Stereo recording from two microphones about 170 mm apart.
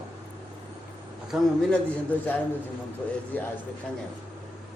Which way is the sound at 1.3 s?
Centre (ahead or behind).